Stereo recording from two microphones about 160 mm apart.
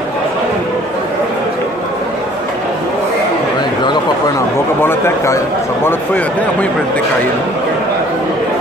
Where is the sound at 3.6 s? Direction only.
25° left (ahead or behind); by 7.0 s 10° left (ahead or behind).